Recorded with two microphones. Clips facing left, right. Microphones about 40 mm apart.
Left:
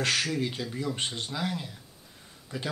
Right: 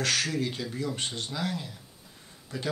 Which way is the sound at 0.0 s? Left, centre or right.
Centre.